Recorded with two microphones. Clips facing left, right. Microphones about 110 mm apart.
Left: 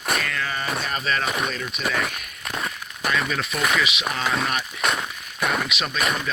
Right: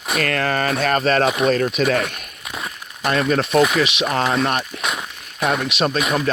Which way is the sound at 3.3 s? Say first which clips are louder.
Right 8 dB; 65° right (ahead or behind).